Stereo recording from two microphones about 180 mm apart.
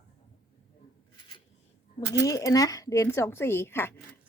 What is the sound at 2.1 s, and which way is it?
Speech, 15° left (ahead or behind).